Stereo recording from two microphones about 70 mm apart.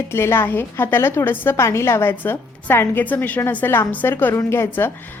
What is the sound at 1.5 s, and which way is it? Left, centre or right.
A woman's voice, left.